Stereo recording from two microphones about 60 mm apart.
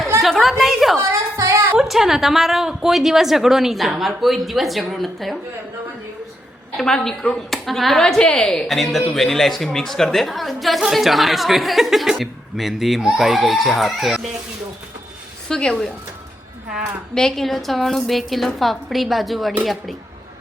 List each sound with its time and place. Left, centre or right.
0.2 s a woman's voice: centre
0.9 s a sound: right
1.8 s a woman's voice: centre
6.7 s a woman's voice: centre
15.4 s a woman's voice: centre
17.2 s a woman's voice: centre